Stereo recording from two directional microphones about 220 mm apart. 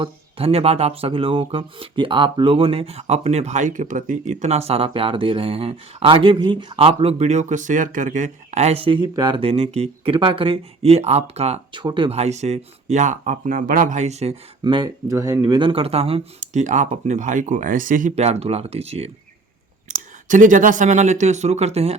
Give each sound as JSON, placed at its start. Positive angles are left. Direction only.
{"t": 0.0, "sound": "speech", "side_deg": -25}